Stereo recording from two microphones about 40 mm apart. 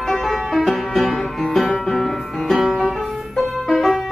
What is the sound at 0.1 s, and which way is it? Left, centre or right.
Music, centre.